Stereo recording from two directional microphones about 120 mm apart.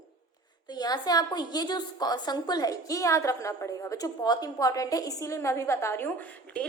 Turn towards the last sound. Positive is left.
turn(degrees=10)  # may be behind; listen again after turning